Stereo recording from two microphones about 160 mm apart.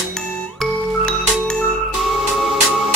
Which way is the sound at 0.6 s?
5° left (ahead or behind).